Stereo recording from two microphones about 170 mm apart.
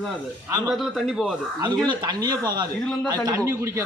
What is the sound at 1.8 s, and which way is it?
A man's voice, 25° right (ahead or behind).